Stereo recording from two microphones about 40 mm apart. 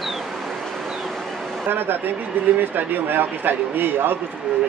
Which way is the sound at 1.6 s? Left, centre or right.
Right.